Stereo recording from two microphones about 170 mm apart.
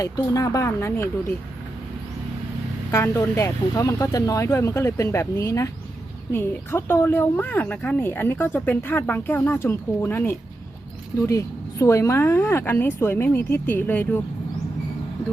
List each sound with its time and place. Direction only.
0.0 s speech: 20° left (ahead or behind)
2.9 s speech: 15° left (ahead or behind)